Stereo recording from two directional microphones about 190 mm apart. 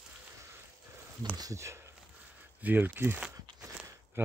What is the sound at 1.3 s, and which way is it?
Speech, 15° right (ahead or behind).